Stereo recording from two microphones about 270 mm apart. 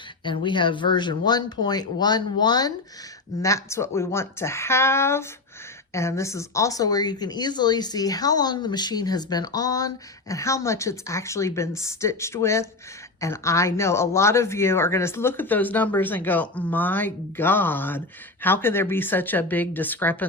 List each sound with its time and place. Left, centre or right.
0.3 s speech: centre